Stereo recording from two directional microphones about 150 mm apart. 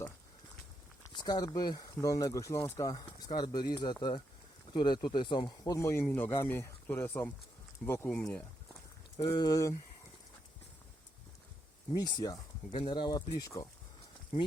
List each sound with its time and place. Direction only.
1.1 s speech: 30° left (ahead or behind); by 8.2 s 15° left (ahead or behind)
9.1 s speech: 25° left (ahead or behind)
11.9 s speech: 25° left (ahead or behind)